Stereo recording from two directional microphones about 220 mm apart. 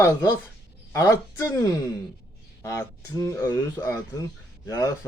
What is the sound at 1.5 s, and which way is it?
Speech, 15° left (ahead or behind).